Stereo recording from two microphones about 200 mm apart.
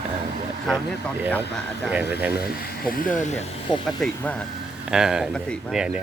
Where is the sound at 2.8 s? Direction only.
45° left (ahead or behind).